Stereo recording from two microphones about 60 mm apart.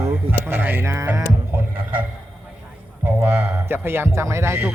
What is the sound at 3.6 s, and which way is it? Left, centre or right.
Speech, right.